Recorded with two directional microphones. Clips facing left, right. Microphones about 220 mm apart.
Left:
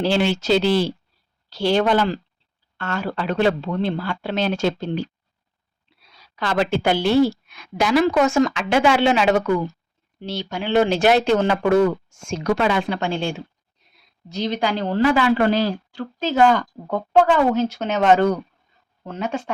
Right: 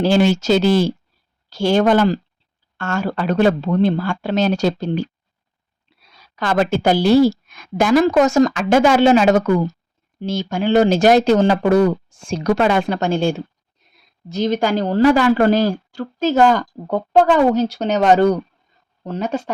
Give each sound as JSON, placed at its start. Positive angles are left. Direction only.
{"t": 0.0, "sound": "speech", "side_deg": -45}